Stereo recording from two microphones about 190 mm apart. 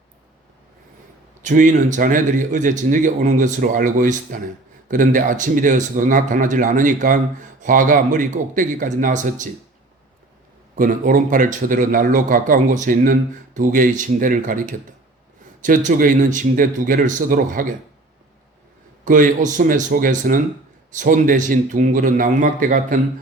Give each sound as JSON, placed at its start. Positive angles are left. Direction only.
{"t": 1.4, "sound": "a man's voice", "side_deg": -40}
{"t": 10.8, "sound": "a man's voice", "side_deg": -45}
{"t": 19.0, "sound": "a man's voice", "side_deg": -45}